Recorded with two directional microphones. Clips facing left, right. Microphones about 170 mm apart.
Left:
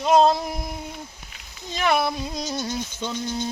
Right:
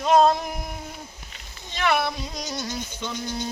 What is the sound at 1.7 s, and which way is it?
Speech, 15° left (ahead or behind).